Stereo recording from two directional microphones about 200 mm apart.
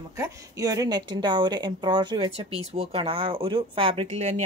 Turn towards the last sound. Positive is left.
turn(degrees=-35)  # may be behind; listen again after turning